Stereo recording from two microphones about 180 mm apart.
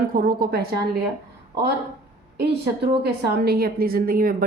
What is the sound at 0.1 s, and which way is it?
Speech, 55° right (ahead or behind).